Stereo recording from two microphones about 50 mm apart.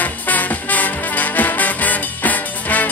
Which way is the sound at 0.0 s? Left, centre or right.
Left.